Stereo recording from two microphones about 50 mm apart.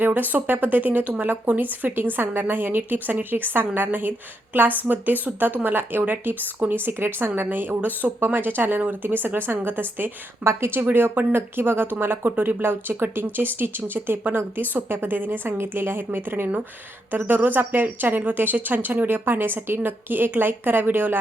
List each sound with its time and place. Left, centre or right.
0.0 s a woman's voice: right
10.4 s a woman's voice: right
15.4 s a woman's voice: right